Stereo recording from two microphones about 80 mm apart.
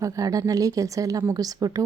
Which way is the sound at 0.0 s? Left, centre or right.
Right.